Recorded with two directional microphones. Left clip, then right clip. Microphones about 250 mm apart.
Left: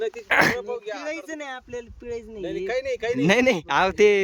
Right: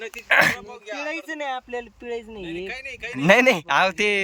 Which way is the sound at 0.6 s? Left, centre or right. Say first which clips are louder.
Left 4 dB; left.